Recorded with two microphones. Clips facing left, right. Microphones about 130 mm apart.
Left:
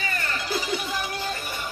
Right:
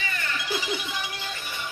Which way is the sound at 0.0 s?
40° left (ahead or behind).